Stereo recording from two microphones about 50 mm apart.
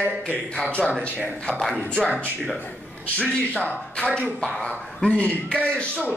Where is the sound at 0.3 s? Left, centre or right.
Left.